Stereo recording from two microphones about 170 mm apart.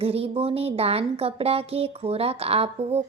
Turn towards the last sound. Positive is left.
turn(degrees=-35)  # may be behind; listen again after turning